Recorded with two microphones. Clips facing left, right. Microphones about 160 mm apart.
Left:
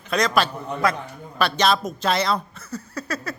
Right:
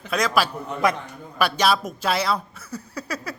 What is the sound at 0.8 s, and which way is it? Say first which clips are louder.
Speech: right 1 dB; 20° right (ahead or behind).